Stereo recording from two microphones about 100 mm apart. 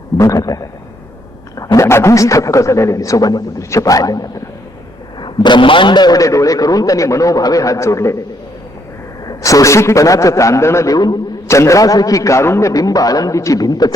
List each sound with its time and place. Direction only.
0.2 s a man's voice: 35° left (ahead or behind)
5.2 s a man's voice: 50° left (ahead or behind); by 8.1 s 30° left (ahead or behind)
9.2 s a man's voice: 35° left (ahead or behind)
11.4 s a man's voice: 30° left (ahead or behind)